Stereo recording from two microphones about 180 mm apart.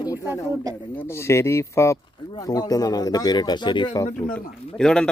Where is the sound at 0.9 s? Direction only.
15° left (ahead or behind).